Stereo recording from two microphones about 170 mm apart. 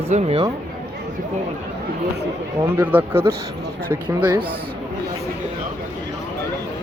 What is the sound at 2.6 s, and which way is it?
Speech, 10° right (ahead or behind).